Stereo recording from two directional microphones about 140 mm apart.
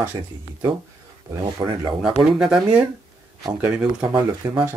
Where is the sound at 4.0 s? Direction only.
30° right (ahead or behind).